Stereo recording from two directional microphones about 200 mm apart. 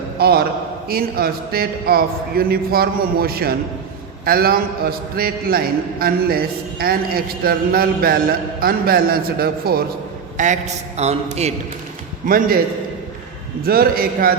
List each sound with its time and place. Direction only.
0.2 s a man's voice: 50° right (ahead or behind)
10.3 s a man's voice: 40° right (ahead or behind)
12.2 s a man's voice: 45° right (ahead or behind)
13.7 s a man's voice: 50° right (ahead or behind)